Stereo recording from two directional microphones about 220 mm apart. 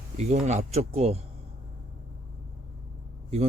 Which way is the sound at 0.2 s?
30° right (ahead or behind).